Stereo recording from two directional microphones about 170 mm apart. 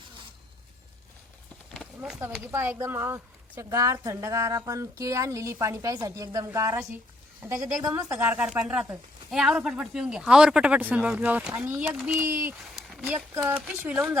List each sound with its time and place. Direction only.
2.0 s a woman's voice: 5° right (ahead or behind)